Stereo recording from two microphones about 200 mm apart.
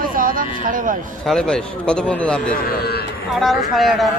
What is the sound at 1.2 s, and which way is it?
Speech, 5° left (ahead or behind).